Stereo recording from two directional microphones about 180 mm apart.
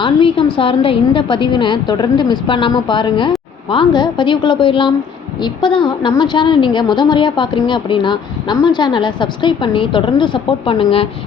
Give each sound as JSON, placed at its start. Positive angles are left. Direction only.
{"t": 0.0, "sound": "a woman's voice", "side_deg": 30}